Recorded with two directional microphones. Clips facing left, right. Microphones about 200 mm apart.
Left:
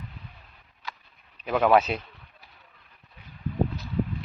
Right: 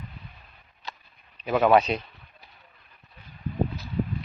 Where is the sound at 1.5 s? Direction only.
Centre (ahead or behind).